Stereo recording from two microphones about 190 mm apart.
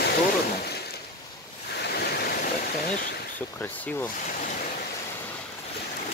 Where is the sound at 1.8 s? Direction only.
55° left (ahead or behind).